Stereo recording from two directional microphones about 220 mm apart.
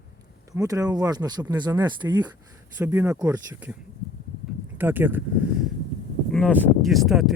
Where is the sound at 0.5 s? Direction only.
15° right (ahead or behind).